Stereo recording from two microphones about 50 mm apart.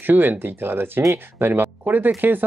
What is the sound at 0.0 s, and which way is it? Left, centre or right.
Speech, right.